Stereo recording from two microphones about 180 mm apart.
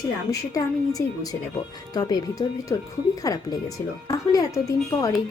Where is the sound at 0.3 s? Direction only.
20° left (ahead or behind).